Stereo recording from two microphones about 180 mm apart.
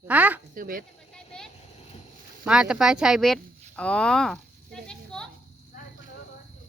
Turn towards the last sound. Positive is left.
turn(degrees=5)  # may be behind; listen again after turning